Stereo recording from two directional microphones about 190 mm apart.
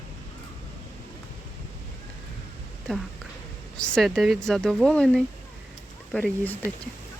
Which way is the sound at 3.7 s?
5° left (ahead or behind).